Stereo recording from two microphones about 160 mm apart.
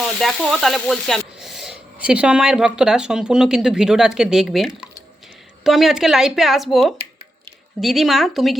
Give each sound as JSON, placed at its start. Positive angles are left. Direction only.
{"t": 0.0, "sound": "speech", "side_deg": 0}